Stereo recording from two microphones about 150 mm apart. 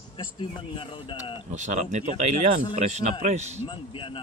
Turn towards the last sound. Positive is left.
turn(degrees=35)  # may be behind; listen again after turning